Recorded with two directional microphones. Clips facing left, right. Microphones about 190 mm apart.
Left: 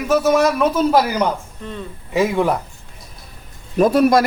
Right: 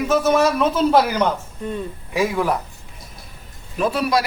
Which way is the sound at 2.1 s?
25° left (ahead or behind).